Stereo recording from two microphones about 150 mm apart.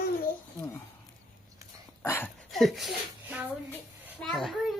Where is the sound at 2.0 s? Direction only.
15° left (ahead or behind).